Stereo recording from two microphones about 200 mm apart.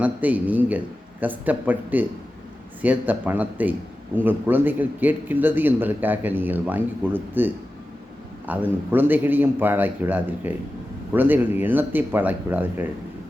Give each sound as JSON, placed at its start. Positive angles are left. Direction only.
{"t": 0.0, "sound": "a man's voice", "side_deg": -10}